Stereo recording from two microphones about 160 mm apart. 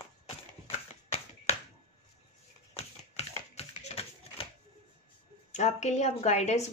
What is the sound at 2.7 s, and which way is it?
Typewriter, 40° left (ahead or behind).